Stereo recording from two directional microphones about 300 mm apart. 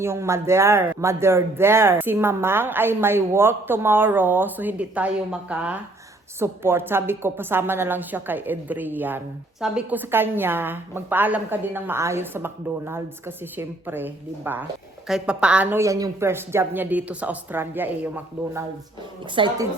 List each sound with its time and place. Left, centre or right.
0.0 s a woman's voice: centre
19.4 s a woman's voice: centre